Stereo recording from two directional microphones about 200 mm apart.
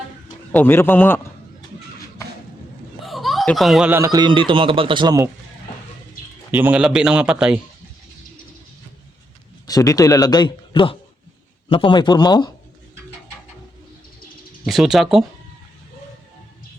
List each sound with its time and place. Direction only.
0.5 s a man's voice: 10° left (ahead or behind)
3.0 s speech: centre (ahead or behind); by 5.3 s 20° right (ahead or behind)
6.5 s a man's voice: 10° right (ahead or behind)
9.6 s speech: 15° left (ahead or behind)
14.6 s a man's voice: centre (ahead or behind)